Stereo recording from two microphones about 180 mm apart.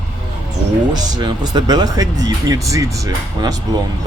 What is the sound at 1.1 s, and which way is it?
Speech, 20° right (ahead or behind).